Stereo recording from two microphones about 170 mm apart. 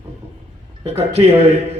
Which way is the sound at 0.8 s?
35° right (ahead or behind).